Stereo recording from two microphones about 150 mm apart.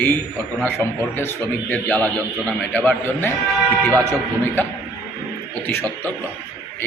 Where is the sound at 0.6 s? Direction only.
15° left (ahead or behind).